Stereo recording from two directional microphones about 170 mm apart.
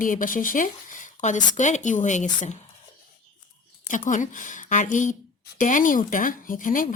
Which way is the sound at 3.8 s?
50° left (ahead or behind).